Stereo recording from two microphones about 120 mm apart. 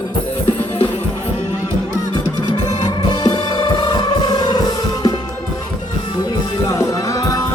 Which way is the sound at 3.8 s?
35° left (ahead or behind).